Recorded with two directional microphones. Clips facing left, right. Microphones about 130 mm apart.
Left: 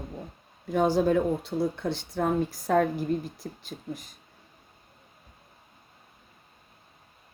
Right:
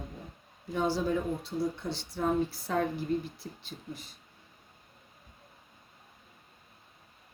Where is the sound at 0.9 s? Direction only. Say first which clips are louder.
Left 7 dB; 60° left (ahead or behind); by 4.1 s 45° left (ahead or behind).